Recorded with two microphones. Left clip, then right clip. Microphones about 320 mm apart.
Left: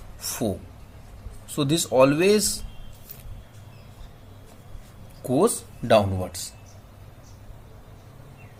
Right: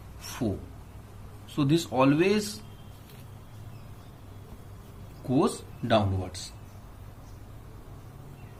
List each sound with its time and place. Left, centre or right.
0.2 s a sound: left
1.5 s speech: left
5.3 s speech: left